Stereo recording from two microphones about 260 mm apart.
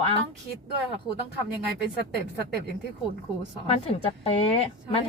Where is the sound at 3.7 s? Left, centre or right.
Left.